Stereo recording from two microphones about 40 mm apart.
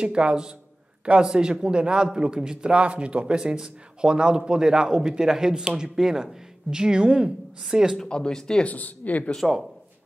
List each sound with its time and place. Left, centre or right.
0.0 s a man's voice: right
8.1 s speech: centre
8.6 s speech: left
9.4 s speech: centre